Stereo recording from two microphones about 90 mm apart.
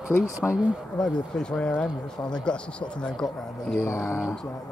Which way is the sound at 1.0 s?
10° left (ahead or behind).